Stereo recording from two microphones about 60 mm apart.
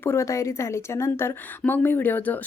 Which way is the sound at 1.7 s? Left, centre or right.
Left.